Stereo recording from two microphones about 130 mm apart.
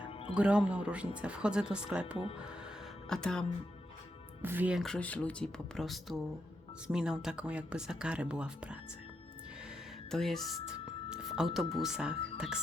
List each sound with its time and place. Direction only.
0.0 s music: 40° left (ahead or behind)
0.3 s speech: 10° right (ahead or behind)
3.1 s speech: 5° left (ahead or behind)
4.4 s speech: 15° right (ahead or behind)
4.8 s speech: 5° left (ahead or behind)
10.1 s speech: 5° left (ahead or behind)